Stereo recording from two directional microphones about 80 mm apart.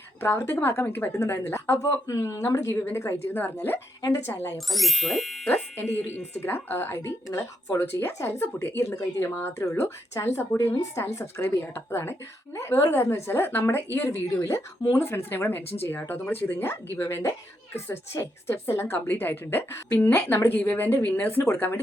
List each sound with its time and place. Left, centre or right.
0.2 s speech: left
4.5 s speech: centre
5.7 s speech: left